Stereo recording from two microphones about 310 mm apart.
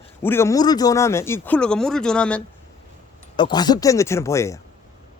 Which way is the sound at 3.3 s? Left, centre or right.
Centre.